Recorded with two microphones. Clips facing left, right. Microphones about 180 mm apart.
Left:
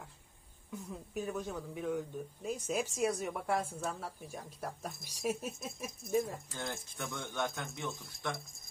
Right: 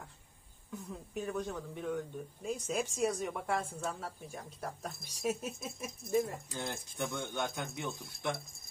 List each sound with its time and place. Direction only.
0.7 s speech: 5° left (ahead or behind)
6.5 s speech: 15° right (ahead or behind)